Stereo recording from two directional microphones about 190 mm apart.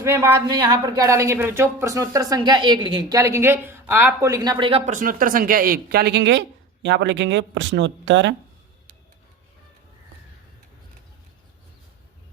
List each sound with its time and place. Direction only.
0.0 s speech: 15° right (ahead or behind)
4.9 s speech: 45° right (ahead or behind); by 8.4 s 75° right (ahead or behind)